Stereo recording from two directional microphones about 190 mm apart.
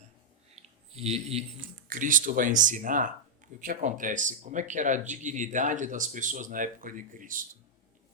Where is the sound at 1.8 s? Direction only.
45° right (ahead or behind).